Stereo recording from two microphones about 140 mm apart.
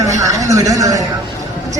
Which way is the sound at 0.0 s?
25° right (ahead or behind).